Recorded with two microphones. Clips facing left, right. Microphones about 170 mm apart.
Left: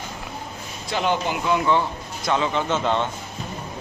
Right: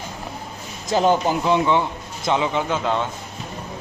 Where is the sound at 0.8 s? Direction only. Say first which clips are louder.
Right 5 dB; 40° right (ahead or behind).